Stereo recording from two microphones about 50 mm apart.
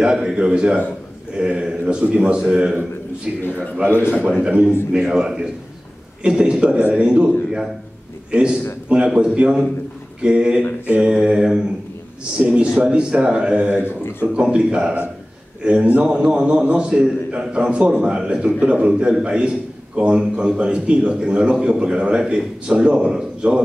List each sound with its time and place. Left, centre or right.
0.0 s a man's voice: centre